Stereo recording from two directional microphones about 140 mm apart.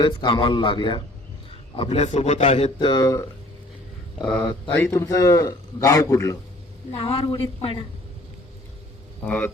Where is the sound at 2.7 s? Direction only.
30° left (ahead or behind).